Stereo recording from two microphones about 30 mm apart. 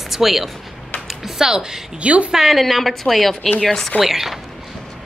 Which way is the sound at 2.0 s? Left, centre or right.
Right.